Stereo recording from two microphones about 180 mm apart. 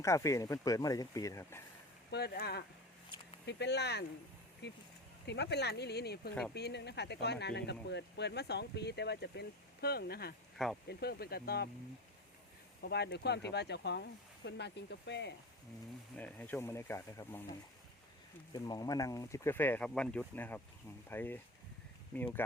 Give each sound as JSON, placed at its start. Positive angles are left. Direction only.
{"t": 0.0, "sound": "speech", "side_deg": 15}
{"t": 2.0, "sound": "speech", "side_deg": 65}
{"t": 12.8, "sound": "speech", "side_deg": 65}
{"t": 16.1, "sound": "speech", "side_deg": 10}
{"t": 18.5, "sound": "speech", "side_deg": 20}